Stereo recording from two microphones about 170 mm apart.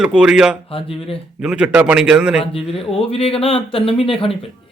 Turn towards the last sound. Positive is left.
turn(degrees=30)  # may be behind; listen again after turning